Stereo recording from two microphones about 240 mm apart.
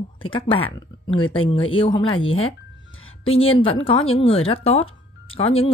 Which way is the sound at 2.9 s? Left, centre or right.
Left.